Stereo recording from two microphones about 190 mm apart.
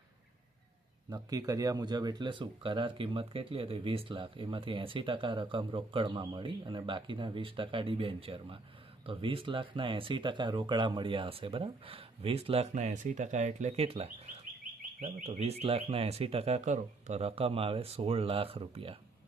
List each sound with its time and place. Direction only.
1.1 s speech: 20° right (ahead or behind)